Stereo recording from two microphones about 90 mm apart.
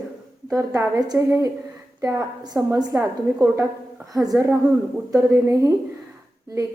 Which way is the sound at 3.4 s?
30° right (ahead or behind).